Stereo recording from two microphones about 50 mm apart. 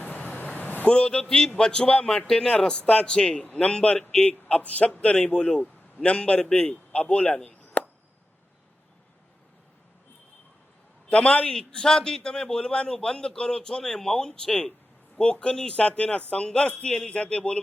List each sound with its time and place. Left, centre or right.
0.0 s vehicle: left
0.9 s a man's voice: centre
7.8 s chop: left
11.1 s speech: left
11.5 s a man's voice: centre